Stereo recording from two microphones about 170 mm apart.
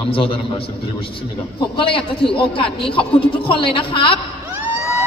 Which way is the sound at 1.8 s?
30° left (ahead or behind).